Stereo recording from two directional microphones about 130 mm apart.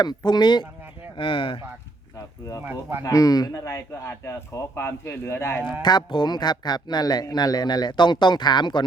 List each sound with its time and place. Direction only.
0.0 s speech: 35° left (ahead or behind)
3.0 s a man's voice: 25° left (ahead or behind)
5.8 s speech: 35° left (ahead or behind)